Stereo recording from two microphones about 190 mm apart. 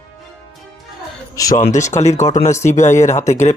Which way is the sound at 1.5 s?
40° left (ahead or behind).